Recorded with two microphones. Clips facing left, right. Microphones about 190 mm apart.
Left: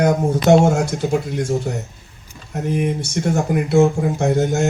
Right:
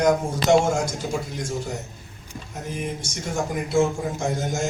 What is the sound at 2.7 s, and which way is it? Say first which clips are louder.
Speech: left 10 dB; 60° left (ahead or behind).